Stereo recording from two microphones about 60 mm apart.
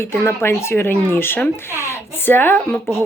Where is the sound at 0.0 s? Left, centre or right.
Left.